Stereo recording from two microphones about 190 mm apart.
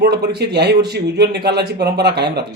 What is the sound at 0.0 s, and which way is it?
A man's voice, 60° right (ahead or behind).